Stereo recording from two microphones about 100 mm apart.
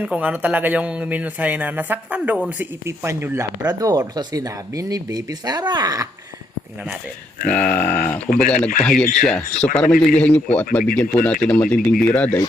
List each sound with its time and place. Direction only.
0.0 s speech: 15° right (ahead or behind)
2.8 s speech: 25° right (ahead or behind)
3.7 s speech: 35° right (ahead or behind)
7.4 s speech: 15° left (ahead or behind)